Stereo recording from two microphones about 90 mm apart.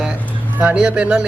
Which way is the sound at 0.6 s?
10° right (ahead or behind).